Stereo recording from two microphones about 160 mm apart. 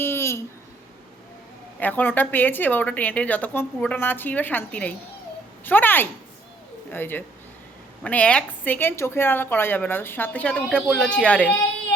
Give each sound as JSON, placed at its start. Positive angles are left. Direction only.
{"t": 0.0, "sound": "babbling", "side_deg": 15}
{"t": 1.8, "sound": "a woman's voice", "side_deg": 10}